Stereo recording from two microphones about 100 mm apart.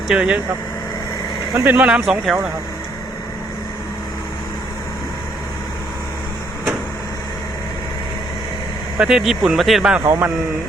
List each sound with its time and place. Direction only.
0.1 s speech: 10° right (ahead or behind)
1.6 s speech: 15° right (ahead or behind)
9.0 s speech: 5° right (ahead or behind)
10.0 s a man's voice: 25° right (ahead or behind)